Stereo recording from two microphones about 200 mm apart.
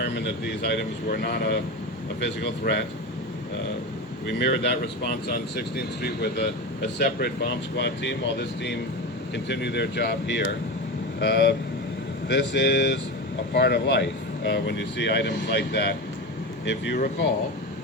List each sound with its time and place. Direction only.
0.0 s speech: 55° left (ahead or behind)
4.3 s speech: 60° left (ahead or behind)